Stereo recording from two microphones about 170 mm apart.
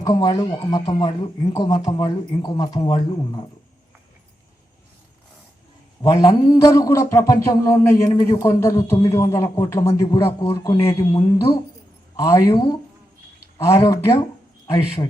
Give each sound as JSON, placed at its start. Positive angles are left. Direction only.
{"t": 0.0, "sound": "speech", "side_deg": 25}
{"t": 6.0, "sound": "a man's voice", "side_deg": 20}
{"t": 10.8, "sound": "a man's voice", "side_deg": 15}